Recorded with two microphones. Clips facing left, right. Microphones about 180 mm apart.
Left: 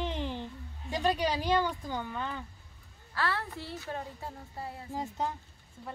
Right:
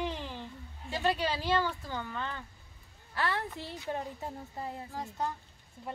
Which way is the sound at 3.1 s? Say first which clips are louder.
Even; 15° right (ahead or behind).